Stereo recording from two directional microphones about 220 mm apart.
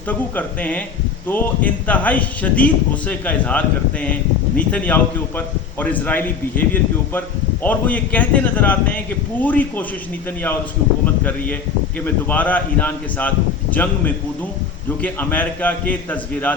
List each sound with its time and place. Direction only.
0.1 s a man's voice: 5° left (ahead or behind)
11.0 s a man's voice: 10° left (ahead or behind)
15.0 s a man's voice: 5° left (ahead or behind)